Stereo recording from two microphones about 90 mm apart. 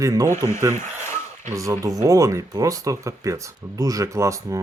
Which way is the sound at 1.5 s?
35° right (ahead or behind).